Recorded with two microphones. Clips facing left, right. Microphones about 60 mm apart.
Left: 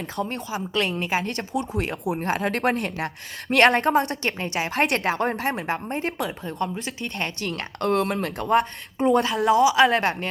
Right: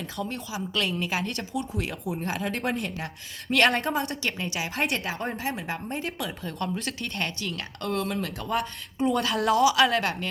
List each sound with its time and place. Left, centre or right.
0.2 s a woman's voice: left
1.2 s speech: left
4.3 s a woman's voice: left
4.7 s speech: left
6.7 s speech: centre
7.4 s speech: left
9.5 s speech: centre
9.9 s a woman's voice: left